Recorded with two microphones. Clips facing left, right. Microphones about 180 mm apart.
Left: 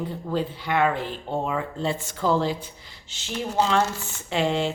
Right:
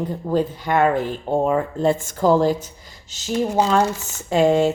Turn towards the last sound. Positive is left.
turn(degrees=-45)  # may be behind; listen again after turning